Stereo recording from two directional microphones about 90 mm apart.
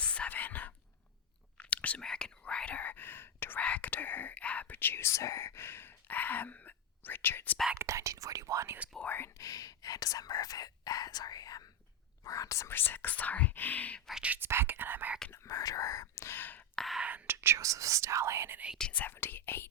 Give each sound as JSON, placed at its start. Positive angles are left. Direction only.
{"t": 0.0, "sound": "whispering", "side_deg": 15}
{"t": 7.8, "sound": "speech", "side_deg": -35}
{"t": 9.0, "sound": "speech", "side_deg": 25}
{"t": 9.4, "sound": "speech", "side_deg": 40}
{"t": 12.7, "sound": "speech", "side_deg": 20}
{"t": 14.1, "sound": "speech", "side_deg": -10}
{"t": 14.3, "sound": "speech", "side_deg": -25}
{"t": 15.3, "sound": "speech", "side_deg": 40}
{"t": 16.7, "sound": "speech", "side_deg": 0}
{"t": 17.0, "sound": "whispering", "side_deg": -15}
{"t": 17.3, "sound": "speech", "side_deg": -30}
{"t": 18.8, "sound": "speech", "side_deg": 15}